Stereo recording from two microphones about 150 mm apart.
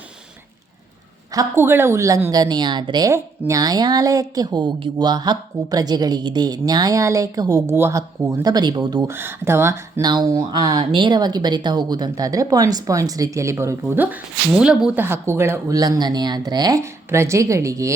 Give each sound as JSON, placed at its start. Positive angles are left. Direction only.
{"t": 1.3, "sound": "a woman's voice", "side_deg": -20}
{"t": 9.1, "sound": "a woman's voice", "side_deg": -15}